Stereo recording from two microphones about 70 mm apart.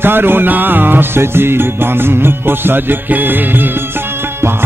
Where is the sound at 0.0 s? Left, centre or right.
Right.